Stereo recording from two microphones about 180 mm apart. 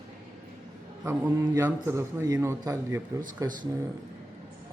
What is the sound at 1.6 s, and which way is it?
A man's voice, 15° right (ahead or behind).